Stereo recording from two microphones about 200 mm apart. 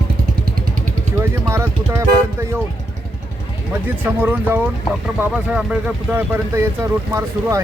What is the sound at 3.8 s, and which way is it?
Speech, 10° right (ahead or behind).